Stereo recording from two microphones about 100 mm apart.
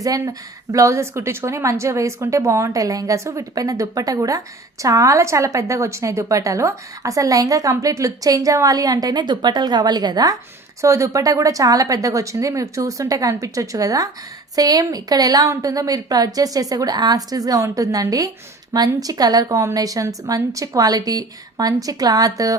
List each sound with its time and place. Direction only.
0.0 s a woman's voice: 35° right (ahead or behind)
10.8 s a woman's voice: 30° right (ahead or behind)